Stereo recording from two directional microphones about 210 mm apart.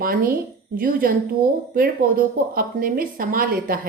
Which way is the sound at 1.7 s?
45° right (ahead or behind).